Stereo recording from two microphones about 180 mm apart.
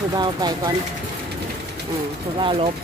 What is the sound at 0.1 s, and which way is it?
Speech, 20° right (ahead or behind).